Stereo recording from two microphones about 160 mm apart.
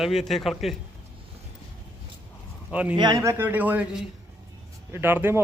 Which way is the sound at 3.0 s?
25° right (ahead or behind).